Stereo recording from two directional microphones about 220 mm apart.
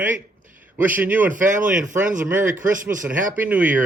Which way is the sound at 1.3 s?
35° right (ahead or behind).